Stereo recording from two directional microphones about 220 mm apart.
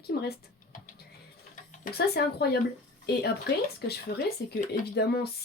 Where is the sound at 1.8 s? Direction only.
45° left (ahead or behind).